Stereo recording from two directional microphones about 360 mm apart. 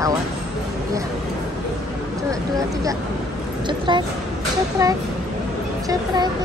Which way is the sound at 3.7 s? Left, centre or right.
Centre.